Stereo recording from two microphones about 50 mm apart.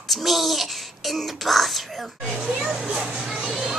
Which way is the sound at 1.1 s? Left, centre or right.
Centre.